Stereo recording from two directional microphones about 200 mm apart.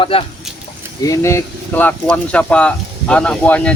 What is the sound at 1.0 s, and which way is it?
Speech, 15° left (ahead or behind).